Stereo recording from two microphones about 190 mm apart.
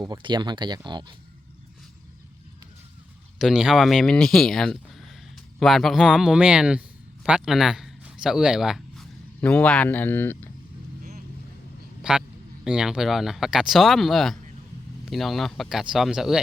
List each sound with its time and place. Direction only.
0.0 s speech: 25° right (ahead or behind)
3.3 s speech: centre (ahead or behind)
12.1 s speech: 5° right (ahead or behind)